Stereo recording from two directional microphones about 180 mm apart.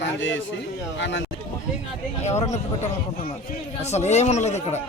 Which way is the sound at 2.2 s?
40° left (ahead or behind).